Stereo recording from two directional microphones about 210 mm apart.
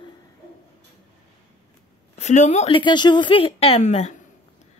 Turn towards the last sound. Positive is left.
turn(degrees=30)  # may be behind; listen again after turning